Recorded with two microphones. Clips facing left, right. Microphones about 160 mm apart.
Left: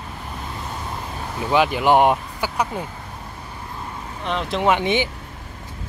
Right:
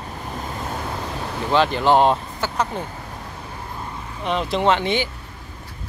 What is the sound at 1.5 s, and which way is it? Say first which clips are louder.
Speech: even; 10° left (ahead or behind).